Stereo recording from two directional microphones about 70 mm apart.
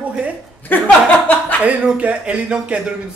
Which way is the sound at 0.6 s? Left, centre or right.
Left.